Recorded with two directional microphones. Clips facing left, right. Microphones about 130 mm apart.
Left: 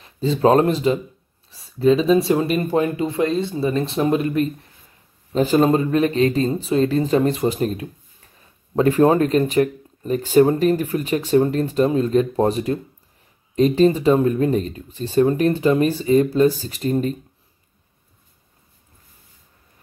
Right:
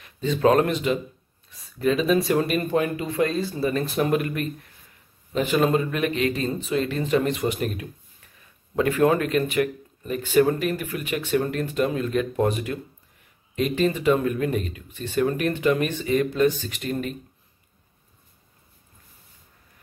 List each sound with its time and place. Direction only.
0.0 s speech: 30° left (ahead or behind)